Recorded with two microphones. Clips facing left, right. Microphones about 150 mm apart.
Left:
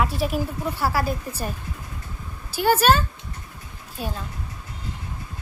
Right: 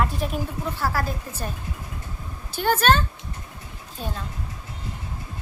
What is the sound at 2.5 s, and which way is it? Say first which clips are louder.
A woman's voice: left 2 dB; 5° left (ahead or behind).